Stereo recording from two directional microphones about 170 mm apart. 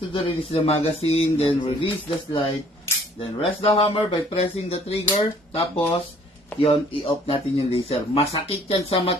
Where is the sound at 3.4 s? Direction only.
35° left (ahead or behind).